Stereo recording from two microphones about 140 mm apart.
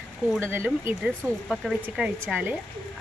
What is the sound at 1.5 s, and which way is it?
Speech, centre (ahead or behind).